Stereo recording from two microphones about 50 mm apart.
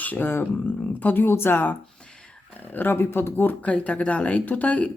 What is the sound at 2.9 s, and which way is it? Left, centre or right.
Speech, left.